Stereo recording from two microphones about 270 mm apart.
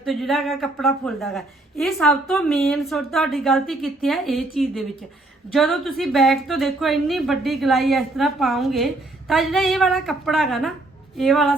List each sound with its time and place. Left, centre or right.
0.0 s a woman's voice: centre